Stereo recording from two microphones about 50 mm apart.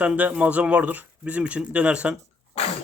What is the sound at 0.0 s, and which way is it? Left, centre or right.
Speech, right.